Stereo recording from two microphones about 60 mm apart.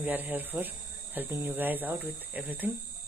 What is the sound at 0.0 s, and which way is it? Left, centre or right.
Speech, right.